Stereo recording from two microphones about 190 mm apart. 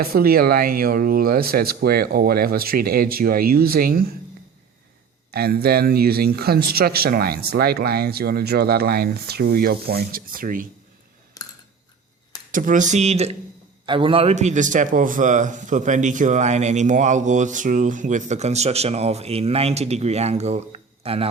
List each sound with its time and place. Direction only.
0.0 s speech: 50° right (ahead or behind)
5.3 s speech: 55° right (ahead or behind)
11.4 s a sound: 20° left (ahead or behind)
12.5 s a man's voice: 45° right (ahead or behind)